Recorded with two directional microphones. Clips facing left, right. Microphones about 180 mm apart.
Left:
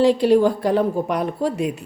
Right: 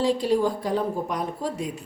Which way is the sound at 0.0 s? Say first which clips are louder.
Left 7 dB; 70° left (ahead or behind).